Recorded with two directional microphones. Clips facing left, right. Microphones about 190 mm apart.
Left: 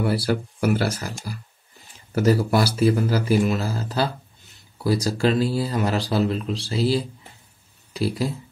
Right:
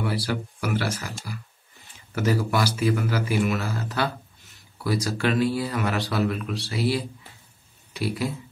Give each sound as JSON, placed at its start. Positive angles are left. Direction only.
{"t": 0.0, "sound": "speech", "side_deg": 40}